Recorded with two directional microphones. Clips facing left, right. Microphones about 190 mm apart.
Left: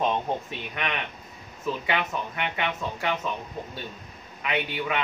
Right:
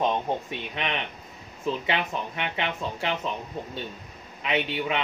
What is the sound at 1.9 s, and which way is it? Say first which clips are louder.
A man's voice: even; 25° right (ahead or behind).